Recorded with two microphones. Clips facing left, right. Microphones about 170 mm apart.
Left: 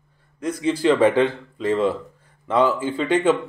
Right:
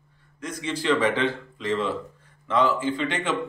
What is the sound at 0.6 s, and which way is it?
Speech, 40° left (ahead or behind).